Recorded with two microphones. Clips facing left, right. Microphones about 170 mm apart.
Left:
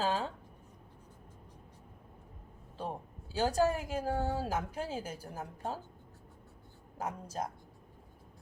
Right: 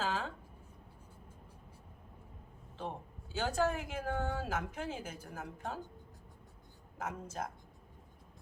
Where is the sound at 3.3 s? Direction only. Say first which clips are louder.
Left 4 dB; 35° left (ahead or behind).